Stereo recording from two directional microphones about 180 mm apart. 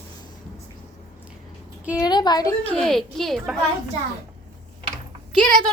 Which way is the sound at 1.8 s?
5° right (ahead or behind).